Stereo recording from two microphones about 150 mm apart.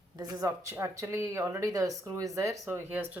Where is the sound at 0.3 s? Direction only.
20° right (ahead or behind).